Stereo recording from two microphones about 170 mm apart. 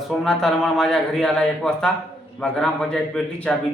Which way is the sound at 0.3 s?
5° left (ahead or behind).